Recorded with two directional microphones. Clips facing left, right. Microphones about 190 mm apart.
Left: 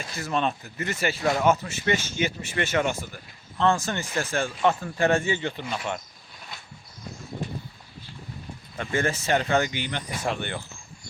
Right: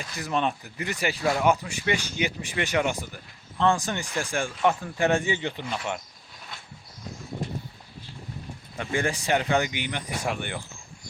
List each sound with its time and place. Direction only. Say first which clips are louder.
0.2 s speech: even; 15° right (ahead or behind)
8.8 s speech: left 1 dB; 15° right (ahead or behind)